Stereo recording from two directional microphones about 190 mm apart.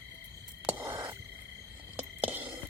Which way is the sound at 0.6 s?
10° right (ahead or behind).